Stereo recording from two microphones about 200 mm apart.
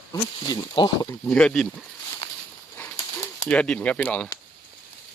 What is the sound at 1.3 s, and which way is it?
Speech, 5° left (ahead or behind).